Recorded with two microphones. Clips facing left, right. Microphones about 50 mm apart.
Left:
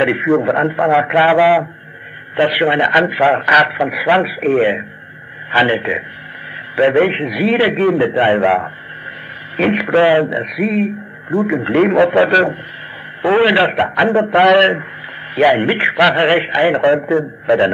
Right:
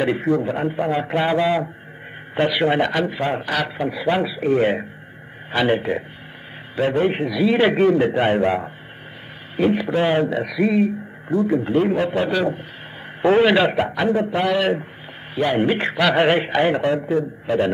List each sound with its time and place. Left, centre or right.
0.0 s speech: left
0.5 s a man's voice: left
2.9 s speech: left
4.2 s a man's voice: left
5.5 s speech: left
7.7 s a man's voice: left
8.4 s speech: left
9.6 s speech: left
10.0 s speech: left
11.4 s a man's voice: left
13.2 s a man's voice: left
14.4 s speech: left
15.5 s a man's voice: left
16.8 s speech: left